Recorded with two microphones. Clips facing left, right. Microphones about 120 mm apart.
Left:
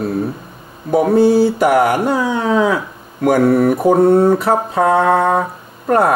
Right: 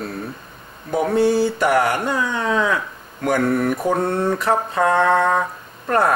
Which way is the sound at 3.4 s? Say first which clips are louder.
Left 7 dB; 35° left (ahead or behind).